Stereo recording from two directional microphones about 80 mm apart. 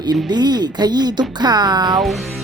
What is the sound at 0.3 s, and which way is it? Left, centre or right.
Speech, right.